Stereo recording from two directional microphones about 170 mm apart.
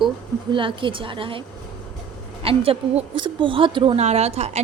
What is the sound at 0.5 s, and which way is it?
A woman's voice, 30° right (ahead or behind).